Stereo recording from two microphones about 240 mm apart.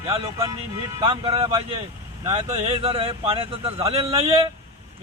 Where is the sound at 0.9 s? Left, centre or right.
Centre.